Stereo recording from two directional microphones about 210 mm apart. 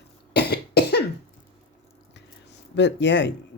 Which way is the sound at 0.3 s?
50° left (ahead or behind).